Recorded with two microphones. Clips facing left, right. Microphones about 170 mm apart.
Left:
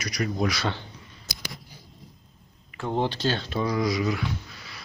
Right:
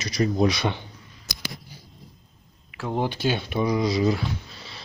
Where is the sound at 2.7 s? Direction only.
5° right (ahead or behind).